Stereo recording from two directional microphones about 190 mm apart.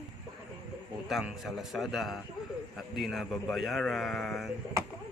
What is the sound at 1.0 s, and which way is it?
A man's voice, centre (ahead or behind).